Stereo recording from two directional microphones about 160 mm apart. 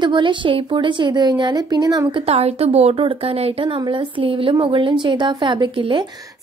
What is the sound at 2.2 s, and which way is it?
A woman's voice, 40° right (ahead or behind).